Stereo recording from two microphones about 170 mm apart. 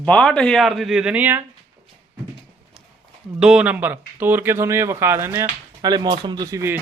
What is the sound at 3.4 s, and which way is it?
Speech, 5° right (ahead or behind).